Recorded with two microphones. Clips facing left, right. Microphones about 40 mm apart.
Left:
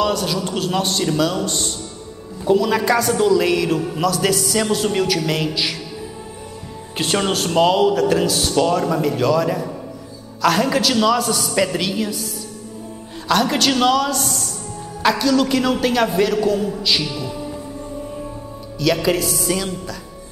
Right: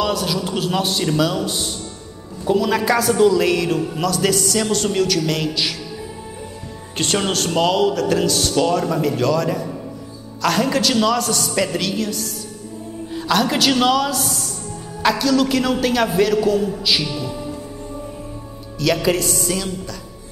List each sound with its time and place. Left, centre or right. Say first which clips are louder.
0.0 s a man's voice: left 1 dB; centre
7.0 s a man's voice: left 1 dB; centre
18.8 s a man's voice: even; centre